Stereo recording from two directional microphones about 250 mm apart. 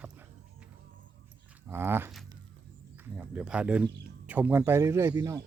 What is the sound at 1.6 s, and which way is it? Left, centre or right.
Speech, centre.